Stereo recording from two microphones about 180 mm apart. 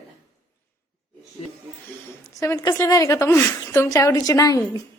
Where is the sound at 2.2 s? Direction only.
20° left (ahead or behind).